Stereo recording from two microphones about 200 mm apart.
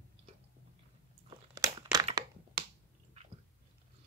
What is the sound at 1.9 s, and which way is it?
Crushing, 20° right (ahead or behind).